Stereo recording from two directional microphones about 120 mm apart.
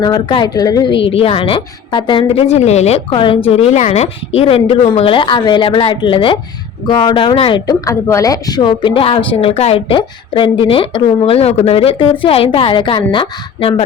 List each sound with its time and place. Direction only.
0.0 s a woman's voice: 40° left (ahead or behind)
1.0 s a woman's voice: 50° left (ahead or behind)
2.3 s a woman's voice: 60° left (ahead or behind); by 7.6 s 45° left (ahead or behind)
7.7 s a woman's voice: 25° left (ahead or behind); by 13.8 s 50° left (ahead or behind)